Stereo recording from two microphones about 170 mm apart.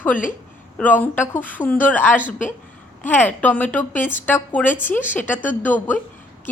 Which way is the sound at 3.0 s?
10° left (ahead or behind).